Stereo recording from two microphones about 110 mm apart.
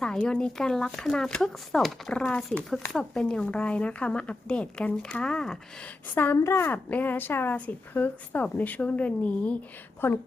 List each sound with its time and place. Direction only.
0.0 s a woman's voice: 5° left (ahead or behind)
6.1 s a woman's voice: 20° left (ahead or behind)